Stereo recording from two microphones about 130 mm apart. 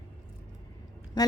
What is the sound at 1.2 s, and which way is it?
Speech, 30° left (ahead or behind).